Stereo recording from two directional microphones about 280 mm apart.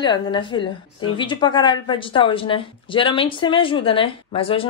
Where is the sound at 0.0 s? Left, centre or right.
Centre.